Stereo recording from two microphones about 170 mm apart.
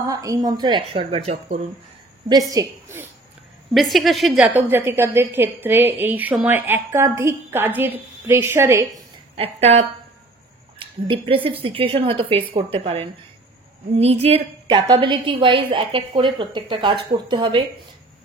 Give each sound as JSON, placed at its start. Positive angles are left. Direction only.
{"t": 0.0, "sound": "speech", "side_deg": -20}
{"t": 2.5, "sound": "a woman's voice", "side_deg": -15}
{"t": 3.7, "sound": "speech", "side_deg": 0}
{"t": 4.6, "sound": "a woman's voice", "side_deg": -10}
{"t": 9.4, "sound": "a woman's voice", "side_deg": -35}
{"t": 11.1, "sound": "a woman's voice", "side_deg": -30}